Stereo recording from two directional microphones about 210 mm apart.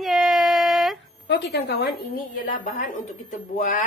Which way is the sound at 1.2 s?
55° left (ahead or behind).